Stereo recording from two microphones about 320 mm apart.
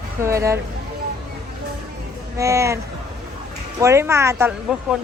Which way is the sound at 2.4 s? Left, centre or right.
Centre.